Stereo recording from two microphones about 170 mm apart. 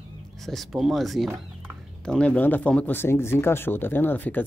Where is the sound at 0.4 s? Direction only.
Centre (ahead or behind).